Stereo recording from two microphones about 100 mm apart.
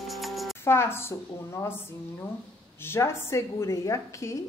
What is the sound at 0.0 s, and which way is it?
Music, centre (ahead or behind).